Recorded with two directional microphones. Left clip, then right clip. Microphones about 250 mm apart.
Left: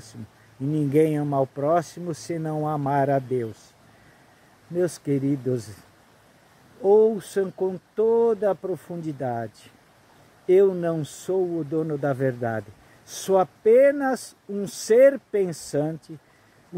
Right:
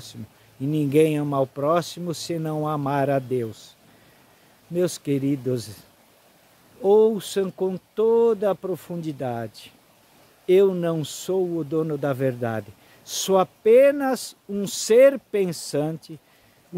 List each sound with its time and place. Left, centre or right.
0.7 s speech: centre
2.1 s speech: centre
4.7 s speech: centre
6.8 s speech: centre